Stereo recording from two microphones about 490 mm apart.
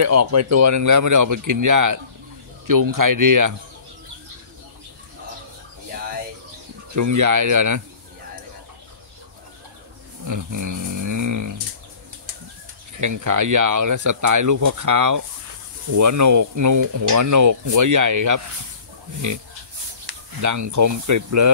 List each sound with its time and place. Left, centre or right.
0.0 s speech: right
7.0 s speech: right
10.2 s roaring cats: right
13.0 s speech: right
20.1 s speech: right